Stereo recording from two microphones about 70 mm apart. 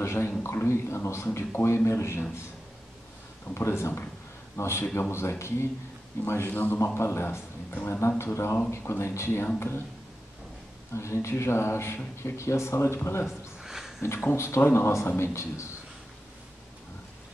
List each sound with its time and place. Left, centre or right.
0.0 s a sound: left
0.7 s a man's voice: left
3.5 s a man's voice: left
6.5 s a man's voice: left
6.8 s a man's voice: left
8.2 s a man's voice: left
11.0 s a man's voice: left
13.6 s a sound: centre
14.0 s a man's voice: left